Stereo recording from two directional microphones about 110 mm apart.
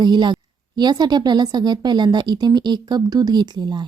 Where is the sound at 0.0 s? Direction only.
40° right (ahead or behind).